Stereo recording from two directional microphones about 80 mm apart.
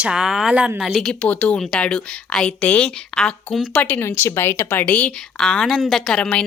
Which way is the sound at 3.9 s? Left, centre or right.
Left.